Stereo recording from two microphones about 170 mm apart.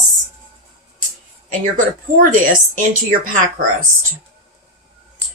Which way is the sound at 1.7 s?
55° right (ahead or behind).